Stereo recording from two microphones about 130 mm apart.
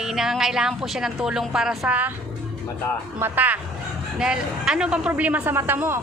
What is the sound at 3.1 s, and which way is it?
A man's voice, 15° right (ahead or behind).